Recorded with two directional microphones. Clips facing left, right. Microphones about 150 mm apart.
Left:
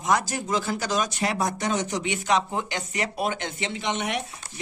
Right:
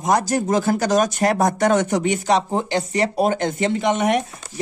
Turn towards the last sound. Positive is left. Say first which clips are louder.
# right 9 dB
turn(degrees=-45)  # may be behind; listen again after turning